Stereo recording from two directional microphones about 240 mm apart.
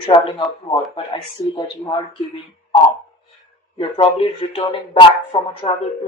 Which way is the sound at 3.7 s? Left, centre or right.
Left.